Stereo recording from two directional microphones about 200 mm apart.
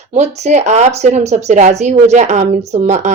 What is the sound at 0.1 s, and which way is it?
A woman's voice, 35° right (ahead or behind).